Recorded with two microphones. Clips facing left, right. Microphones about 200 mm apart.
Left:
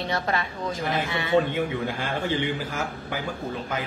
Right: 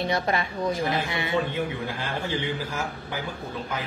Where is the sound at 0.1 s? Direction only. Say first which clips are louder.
Right 1 dB; 15° right (ahead or behind).